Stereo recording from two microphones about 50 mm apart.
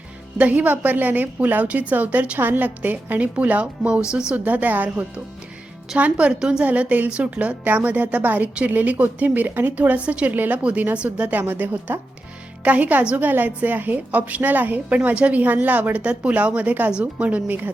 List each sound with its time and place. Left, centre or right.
0.3 s a woman's voice: right
6.4 s a woman's voice: centre
6.7 s a woman's voice: right
10.3 s a woman's voice: right
10.6 s a woman's voice: right
11.3 s a woman's voice: right